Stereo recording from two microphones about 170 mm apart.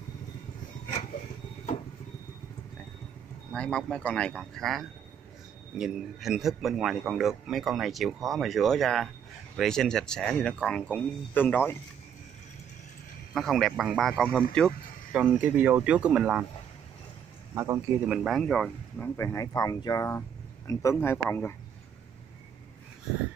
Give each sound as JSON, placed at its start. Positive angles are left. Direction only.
{"t": 3.5, "sound": "speech", "side_deg": 5}
{"t": 13.3, "sound": "speech", "side_deg": 0}
{"t": 15.1, "sound": "speech", "side_deg": -10}
{"t": 17.6, "sound": "speech", "side_deg": -15}
{"t": 18.1, "sound": "speech", "side_deg": 0}
{"t": 19.1, "sound": "speech", "side_deg": 15}